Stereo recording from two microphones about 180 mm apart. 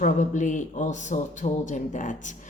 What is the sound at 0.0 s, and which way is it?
Speech, 40° left (ahead or behind).